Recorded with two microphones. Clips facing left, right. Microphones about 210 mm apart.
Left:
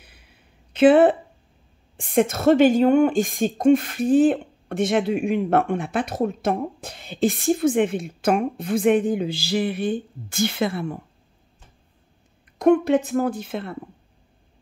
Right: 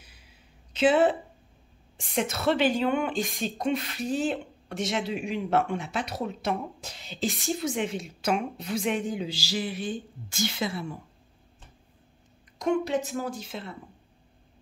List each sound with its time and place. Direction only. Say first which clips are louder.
0.0 s a sound: left 3 dB; 60° left (ahead or behind)
2.0 s a woman's voice: left 9 dB; 50° left (ahead or behind)
12.5 s a woman's voice: left 9 dB; 55° left (ahead or behind)